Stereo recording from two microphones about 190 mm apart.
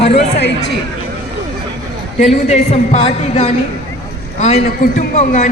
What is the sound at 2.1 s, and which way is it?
A man's voice, 35° left (ahead or behind).